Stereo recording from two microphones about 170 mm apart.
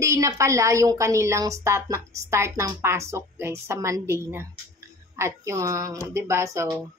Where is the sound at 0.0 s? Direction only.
15° right (ahead or behind).